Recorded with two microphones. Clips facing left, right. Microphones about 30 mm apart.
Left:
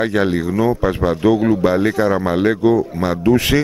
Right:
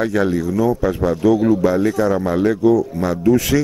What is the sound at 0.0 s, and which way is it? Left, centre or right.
Speech, left.